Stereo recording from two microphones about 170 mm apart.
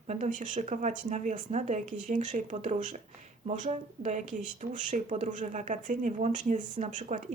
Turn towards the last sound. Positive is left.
turn(degrees=-45)  # may be behind; listen again after turning